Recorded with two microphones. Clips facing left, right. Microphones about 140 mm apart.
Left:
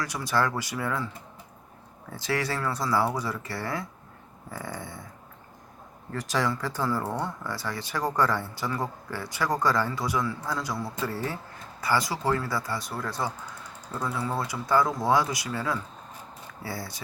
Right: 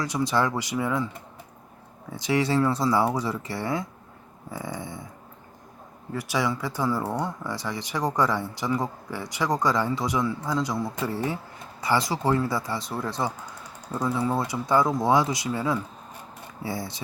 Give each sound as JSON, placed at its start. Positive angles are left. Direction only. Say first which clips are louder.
{"t": 0.0, "sound": "speech", "louder": "right 3 dB", "side_deg": -20}
{"t": 2.1, "sound": "speech", "louder": "right 6 dB", "side_deg": -20}
{"t": 6.1, "sound": "speech", "louder": "right 1 dB", "side_deg": -10}